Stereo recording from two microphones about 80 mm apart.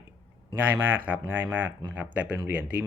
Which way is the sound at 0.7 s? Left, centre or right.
Right.